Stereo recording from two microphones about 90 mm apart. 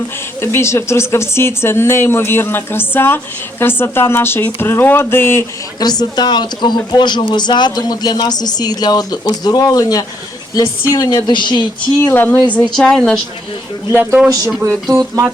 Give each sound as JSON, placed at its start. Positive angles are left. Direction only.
{"t": 0.4, "sound": "speech", "side_deg": 30}
{"t": 5.8, "sound": "speech", "side_deg": 50}
{"t": 12.0, "sound": "speech", "side_deg": 25}
{"t": 12.7, "sound": "a woman's voice", "side_deg": 5}
{"t": 13.9, "sound": "speech", "side_deg": -20}
{"t": 14.6, "sound": "speech", "side_deg": -40}